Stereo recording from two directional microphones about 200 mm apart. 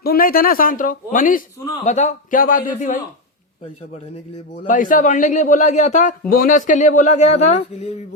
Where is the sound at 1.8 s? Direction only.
35° left (ahead or behind).